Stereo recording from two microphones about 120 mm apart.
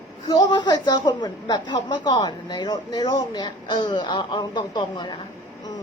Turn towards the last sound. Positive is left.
turn(degrees=40)  # may be behind; listen again after turning